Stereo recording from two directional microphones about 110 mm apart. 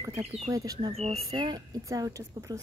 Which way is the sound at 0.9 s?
70° right (ahead or behind).